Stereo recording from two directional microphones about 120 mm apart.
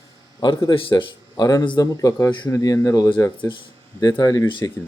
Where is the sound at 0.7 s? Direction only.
45° left (ahead or behind).